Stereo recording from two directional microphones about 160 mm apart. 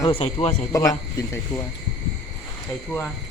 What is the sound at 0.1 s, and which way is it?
Speech, 35° left (ahead or behind).